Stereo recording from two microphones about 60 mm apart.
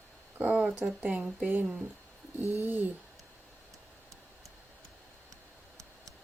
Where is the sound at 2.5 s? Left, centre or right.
Right.